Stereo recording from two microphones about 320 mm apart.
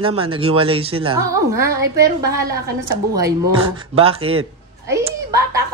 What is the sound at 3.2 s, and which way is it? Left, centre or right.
A man's voice, centre.